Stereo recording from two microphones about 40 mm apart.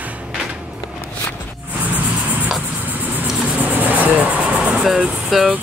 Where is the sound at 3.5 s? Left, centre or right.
Right.